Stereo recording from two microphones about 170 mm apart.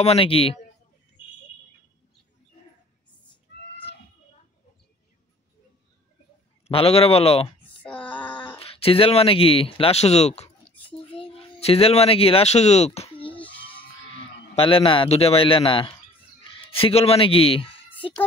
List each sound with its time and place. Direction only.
0.0 s speech: 35° left (ahead or behind)
6.7 s speech: 35° left (ahead or behind)
7.8 s female singing: 10° left (ahead or behind)
8.5 s speech: 35° left (ahead or behind)
10.7 s a sound: 10° left (ahead or behind)
11.1 s speech: 35° left (ahead or behind)